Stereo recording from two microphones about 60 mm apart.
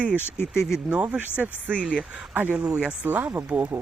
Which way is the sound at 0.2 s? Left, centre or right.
Left.